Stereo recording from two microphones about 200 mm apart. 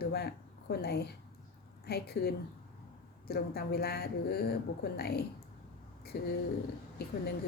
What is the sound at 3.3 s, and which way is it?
A woman's voice, 50° left (ahead or behind).